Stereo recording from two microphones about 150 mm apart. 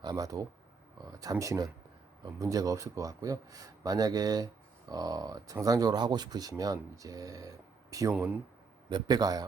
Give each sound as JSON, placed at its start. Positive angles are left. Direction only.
{"t": 0.0, "sound": "speech", "side_deg": -25}
{"t": 8.1, "sound": "speech", "side_deg": -10}
{"t": 8.9, "sound": "speech", "side_deg": -25}